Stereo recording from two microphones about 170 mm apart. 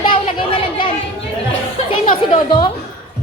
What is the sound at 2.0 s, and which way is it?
Music, 40° left (ahead or behind).